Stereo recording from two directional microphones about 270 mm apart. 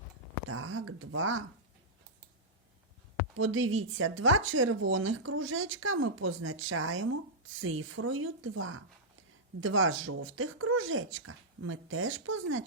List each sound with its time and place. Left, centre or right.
0.5 s speech: right
3.3 s speech: right